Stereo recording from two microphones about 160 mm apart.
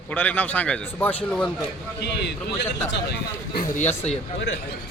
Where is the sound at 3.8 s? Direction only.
45° left (ahead or behind).